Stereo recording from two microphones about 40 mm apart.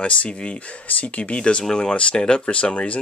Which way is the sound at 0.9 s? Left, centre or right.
Left.